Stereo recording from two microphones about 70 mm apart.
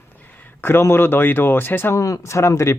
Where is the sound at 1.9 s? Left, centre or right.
Left.